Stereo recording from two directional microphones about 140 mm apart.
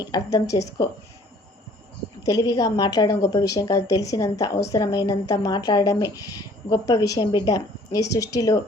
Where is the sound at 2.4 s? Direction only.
25° left (ahead or behind).